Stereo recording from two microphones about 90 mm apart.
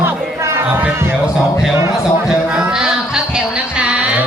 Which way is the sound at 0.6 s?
20° right (ahead or behind).